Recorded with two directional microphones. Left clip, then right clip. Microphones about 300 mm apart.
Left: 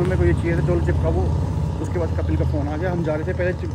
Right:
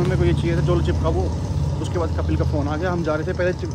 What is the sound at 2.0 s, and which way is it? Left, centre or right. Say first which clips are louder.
Speech: right 1 dB; centre.